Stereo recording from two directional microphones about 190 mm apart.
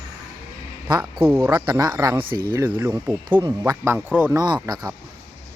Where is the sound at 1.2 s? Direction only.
15° right (ahead or behind).